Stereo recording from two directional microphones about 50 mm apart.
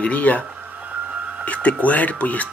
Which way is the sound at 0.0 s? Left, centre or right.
Left.